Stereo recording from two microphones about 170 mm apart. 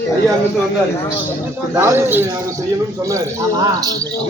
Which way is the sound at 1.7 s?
15° right (ahead or behind).